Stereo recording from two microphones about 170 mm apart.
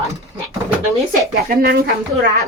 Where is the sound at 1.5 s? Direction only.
60° right (ahead or behind).